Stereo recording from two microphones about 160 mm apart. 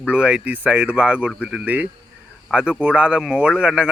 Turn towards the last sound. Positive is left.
turn(degrees=-5)  # may be behind; listen again after turning